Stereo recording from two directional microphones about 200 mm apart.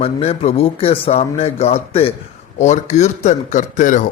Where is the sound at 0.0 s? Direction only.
30° left (ahead or behind).